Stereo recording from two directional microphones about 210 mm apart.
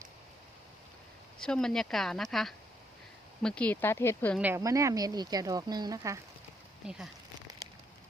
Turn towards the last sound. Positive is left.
turn(degrees=-5)  # may be behind; listen again after turning